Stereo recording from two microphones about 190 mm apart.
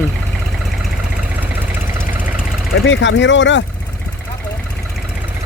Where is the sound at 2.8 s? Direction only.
70° left (ahead or behind).